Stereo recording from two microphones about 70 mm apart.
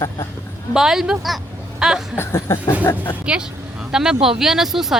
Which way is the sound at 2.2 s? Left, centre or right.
Left.